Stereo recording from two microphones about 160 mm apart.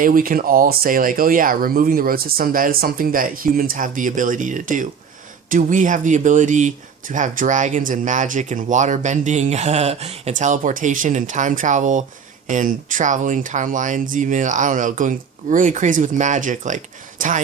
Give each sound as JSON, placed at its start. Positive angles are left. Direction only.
{"t": 0.0, "sound": "speech", "side_deg": -60}